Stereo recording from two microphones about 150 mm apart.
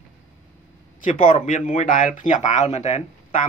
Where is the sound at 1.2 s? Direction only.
55° left (ahead or behind).